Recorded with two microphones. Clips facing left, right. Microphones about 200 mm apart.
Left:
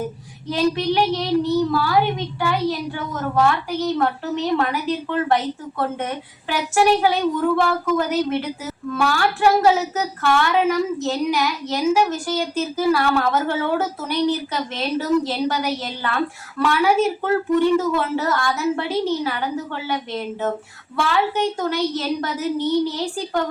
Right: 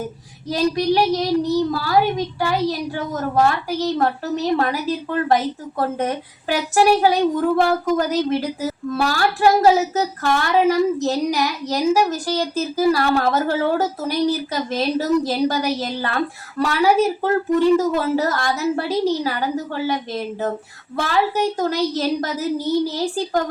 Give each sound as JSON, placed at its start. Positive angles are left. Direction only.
{"t": 0.4, "sound": "a child's voice", "side_deg": -40}